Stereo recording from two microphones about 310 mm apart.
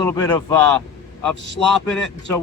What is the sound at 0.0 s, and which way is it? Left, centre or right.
A man's voice, centre.